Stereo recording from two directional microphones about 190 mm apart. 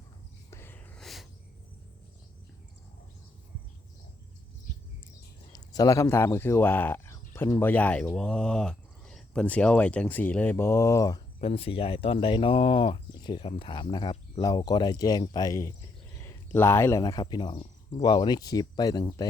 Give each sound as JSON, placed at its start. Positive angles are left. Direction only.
{"t": 0.5, "sound": "a sound", "side_deg": 10}
{"t": 5.5, "sound": "speech", "side_deg": 20}
{"t": 11.3, "sound": "speech", "side_deg": 30}